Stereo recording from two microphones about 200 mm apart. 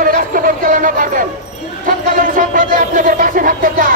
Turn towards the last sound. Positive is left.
turn(degrees=-40)  # may be behind; listen again after turning